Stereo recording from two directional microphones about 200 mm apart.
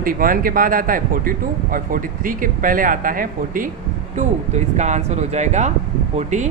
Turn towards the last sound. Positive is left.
turn(degrees=-35)  # may be behind; listen again after turning